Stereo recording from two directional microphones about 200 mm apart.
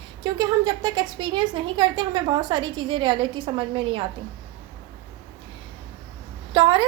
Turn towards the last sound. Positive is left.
turn(degrees=-25)  # may be behind; listen again after turning